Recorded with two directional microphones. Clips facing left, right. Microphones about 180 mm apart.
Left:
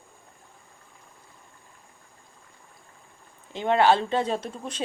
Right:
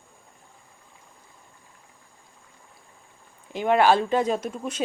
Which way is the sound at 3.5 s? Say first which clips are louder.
Right 1 dB; 25° left (ahead or behind).